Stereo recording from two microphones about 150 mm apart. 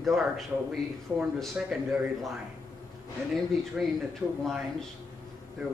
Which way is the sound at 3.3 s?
Centre (ahead or behind).